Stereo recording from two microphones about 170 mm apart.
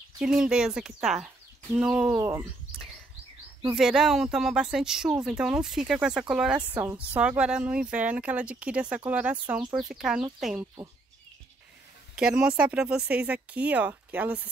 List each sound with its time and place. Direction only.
0.2 s speech: 5° right (ahead or behind)
2.1 s speech: 20° right (ahead or behind)
3.6 s speech: 5° right (ahead or behind)
12.2 s speech: 5° right (ahead or behind)